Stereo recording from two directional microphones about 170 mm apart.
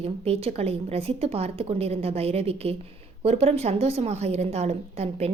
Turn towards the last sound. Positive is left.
turn(degrees=-40)  # may be behind; listen again after turning